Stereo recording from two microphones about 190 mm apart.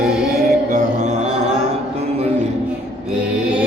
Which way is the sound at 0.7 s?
40° right (ahead or behind).